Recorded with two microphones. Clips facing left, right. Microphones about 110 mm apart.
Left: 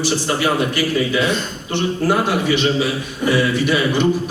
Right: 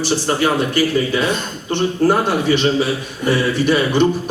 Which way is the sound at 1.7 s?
40° right (ahead or behind).